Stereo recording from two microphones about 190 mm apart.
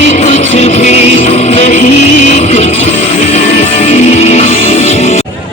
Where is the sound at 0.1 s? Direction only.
40° left (ahead or behind).